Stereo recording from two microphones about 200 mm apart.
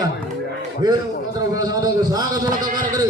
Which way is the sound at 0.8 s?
20° right (ahead or behind).